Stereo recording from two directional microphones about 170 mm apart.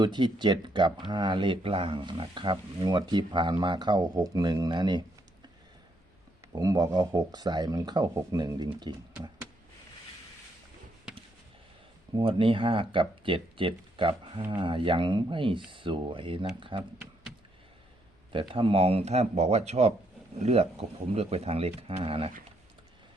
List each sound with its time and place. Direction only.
0.0 s speech: 25° right (ahead or behind)
6.6 s speech: 20° right (ahead or behind)
12.1 s speech: 30° right (ahead or behind)
18.3 s speech: 30° right (ahead or behind)